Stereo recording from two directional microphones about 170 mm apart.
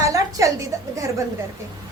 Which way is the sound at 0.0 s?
20° right (ahead or behind).